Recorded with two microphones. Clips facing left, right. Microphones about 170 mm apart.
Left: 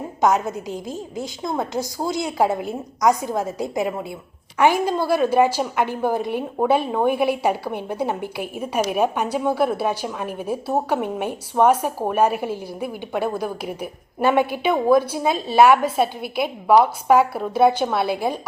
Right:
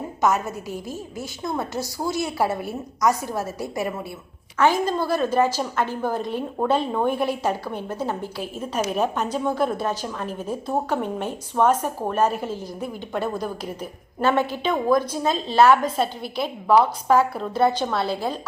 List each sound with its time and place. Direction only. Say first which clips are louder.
0.2 s a woman's voice: left 3 dB; 15° left (ahead or behind)